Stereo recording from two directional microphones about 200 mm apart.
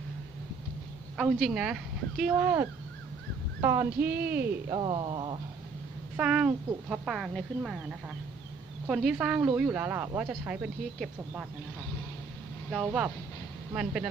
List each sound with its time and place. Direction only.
1.1 s speech: centre (ahead or behind)
4.7 s speech: 25° right (ahead or behind)
6.1 s speech: 5° right (ahead or behind)
8.8 s speech: centre (ahead or behind)
12.7 s speech: 5° right (ahead or behind)